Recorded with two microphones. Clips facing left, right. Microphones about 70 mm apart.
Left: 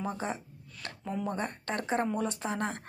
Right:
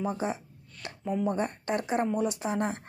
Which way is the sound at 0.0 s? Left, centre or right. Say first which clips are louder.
Right 4 dB; centre.